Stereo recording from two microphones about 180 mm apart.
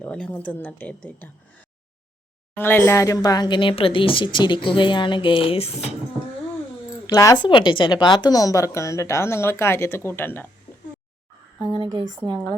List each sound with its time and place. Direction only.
0.0 s a woman's voice: 5° left (ahead or behind); by 5.9 s 35° left (ahead or behind)
7.1 s a woman's voice: 20° left (ahead or behind)
11.6 s speech: 25° right (ahead or behind)